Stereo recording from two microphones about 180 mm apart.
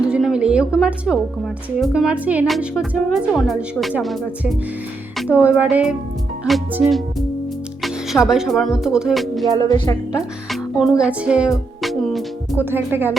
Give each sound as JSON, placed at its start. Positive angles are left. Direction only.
{"t": 0.0, "sound": "a sound", "side_deg": -5}
{"t": 0.8, "sound": "speech", "side_deg": -5}
{"t": 9.6, "sound": "a woman's voice", "side_deg": 25}
{"t": 10.2, "sound": "speech", "side_deg": 0}
{"t": 12.7, "sound": "music", "side_deg": -10}